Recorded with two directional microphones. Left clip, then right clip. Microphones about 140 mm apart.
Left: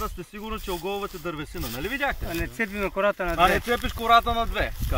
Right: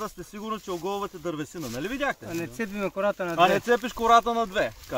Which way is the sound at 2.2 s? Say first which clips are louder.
Left 3 dB; 15° right (ahead or behind).